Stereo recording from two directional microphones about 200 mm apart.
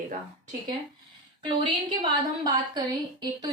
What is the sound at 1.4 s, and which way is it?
A woman's voice, 25° right (ahead or behind).